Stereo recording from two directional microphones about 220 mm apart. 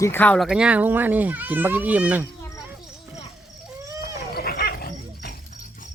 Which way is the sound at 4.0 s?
45° left (ahead or behind).